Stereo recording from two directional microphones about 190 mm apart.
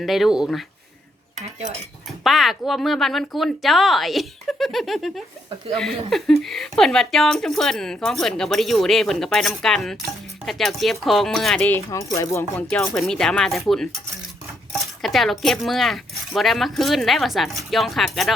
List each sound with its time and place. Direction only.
0.0 s speech: centre (ahead or behind)
2.2 s speech: centre (ahead or behind)
11.9 s speech: 15° left (ahead or behind)
12.9 s speech: centre (ahead or behind)